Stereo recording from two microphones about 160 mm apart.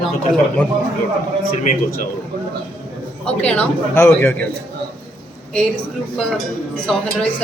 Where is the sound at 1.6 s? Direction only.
60° left (ahead or behind).